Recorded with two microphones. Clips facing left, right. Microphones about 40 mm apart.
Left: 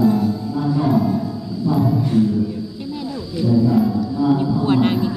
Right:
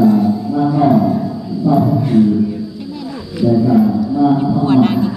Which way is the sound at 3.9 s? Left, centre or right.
Centre.